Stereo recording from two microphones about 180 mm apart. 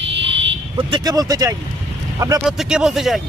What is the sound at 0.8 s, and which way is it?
Speech, 25° right (ahead or behind).